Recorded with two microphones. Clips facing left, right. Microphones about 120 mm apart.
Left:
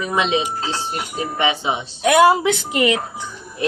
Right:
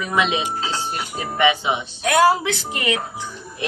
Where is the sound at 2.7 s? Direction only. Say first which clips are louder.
Left 6 dB; 15° left (ahead or behind).